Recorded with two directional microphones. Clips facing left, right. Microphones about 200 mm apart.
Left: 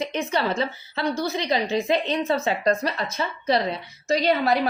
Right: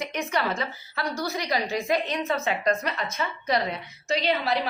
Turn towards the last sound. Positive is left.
turn(degrees=45)  # may be behind; listen again after turning